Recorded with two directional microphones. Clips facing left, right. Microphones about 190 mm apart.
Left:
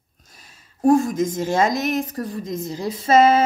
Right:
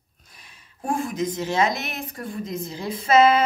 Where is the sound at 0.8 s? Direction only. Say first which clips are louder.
Left 9 dB; 40° left (ahead or behind).